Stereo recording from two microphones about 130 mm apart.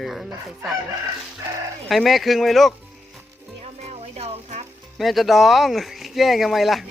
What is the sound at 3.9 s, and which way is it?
Music, 55° right (ahead or behind).